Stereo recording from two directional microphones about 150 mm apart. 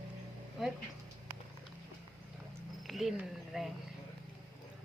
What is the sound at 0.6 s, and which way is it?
Speech, centre (ahead or behind).